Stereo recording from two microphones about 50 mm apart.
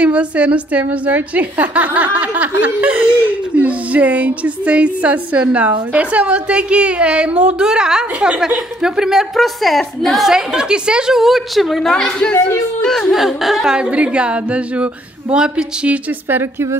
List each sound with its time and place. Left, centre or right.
0.0 s a woman's voice: right
9.4 s a woman's voice: centre
10.2 s a woman's voice: centre
11.1 s a woman's voice: centre
11.8 s a woman's voice: centre
12.8 s a sound: centre
13.1 s a woman's voice: centre
13.7 s a woman's voice: centre